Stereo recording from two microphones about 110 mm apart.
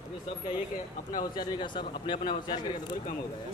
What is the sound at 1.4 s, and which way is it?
Speech, 45° left (ahead or behind).